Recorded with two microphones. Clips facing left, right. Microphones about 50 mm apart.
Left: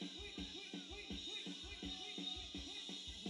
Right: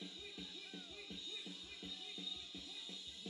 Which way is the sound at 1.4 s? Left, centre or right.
Centre.